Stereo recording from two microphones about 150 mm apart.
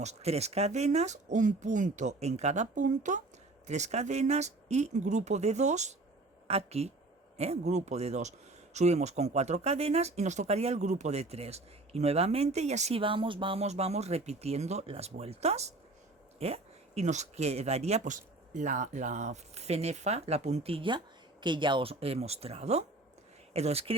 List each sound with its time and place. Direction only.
0.0 s speech: 45° right (ahead or behind)